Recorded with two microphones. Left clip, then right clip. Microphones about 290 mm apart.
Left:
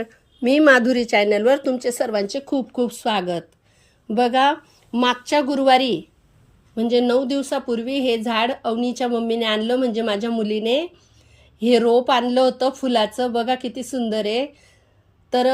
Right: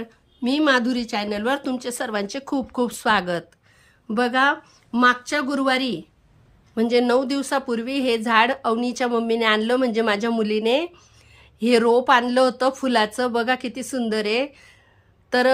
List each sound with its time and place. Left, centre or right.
0.0 s a woman's voice: centre